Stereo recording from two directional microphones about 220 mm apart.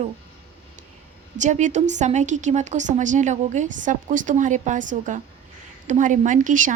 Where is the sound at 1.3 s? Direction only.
35° right (ahead or behind).